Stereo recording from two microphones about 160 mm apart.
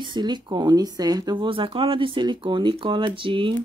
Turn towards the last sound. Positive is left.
turn(degrees=-30)  # may be behind; listen again after turning